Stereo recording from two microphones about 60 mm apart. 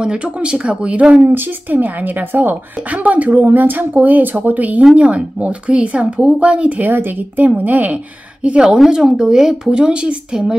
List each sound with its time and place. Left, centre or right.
0.0 s speech: centre
1.2 s speech: right; by 10.5 s centre